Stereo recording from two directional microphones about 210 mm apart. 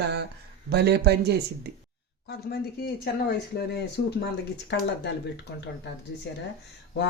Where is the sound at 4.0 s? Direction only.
45° left (ahead or behind).